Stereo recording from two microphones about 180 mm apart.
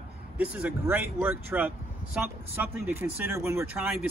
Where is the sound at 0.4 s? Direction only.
10° right (ahead or behind).